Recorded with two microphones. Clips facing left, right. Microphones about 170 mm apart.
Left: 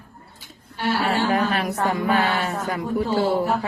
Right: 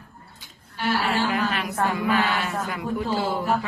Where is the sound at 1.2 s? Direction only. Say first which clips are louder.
Left 4 dB; 40° left (ahead or behind).